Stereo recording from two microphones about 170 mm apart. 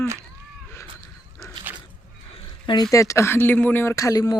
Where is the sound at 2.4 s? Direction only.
30° left (ahead or behind).